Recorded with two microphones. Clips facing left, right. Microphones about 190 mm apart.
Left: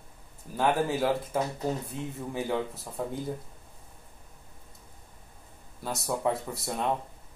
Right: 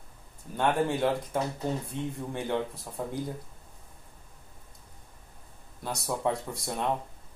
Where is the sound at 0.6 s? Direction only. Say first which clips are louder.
Even; 5° left (ahead or behind).